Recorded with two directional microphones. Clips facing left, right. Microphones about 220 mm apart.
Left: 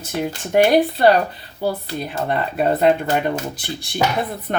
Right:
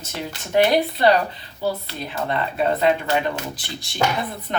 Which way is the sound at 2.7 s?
45° left (ahead or behind).